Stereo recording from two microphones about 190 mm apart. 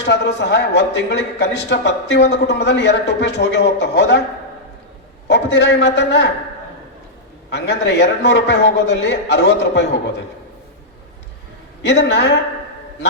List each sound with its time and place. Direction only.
0.0 s a man's voice: 65° left (ahead or behind)
5.3 s a man's voice: 65° left (ahead or behind)
7.5 s a man's voice: 65° left (ahead or behind)
11.8 s a man's voice: 65° left (ahead or behind)